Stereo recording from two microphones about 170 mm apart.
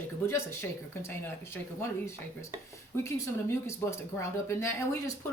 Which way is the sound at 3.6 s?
15° left (ahead or behind).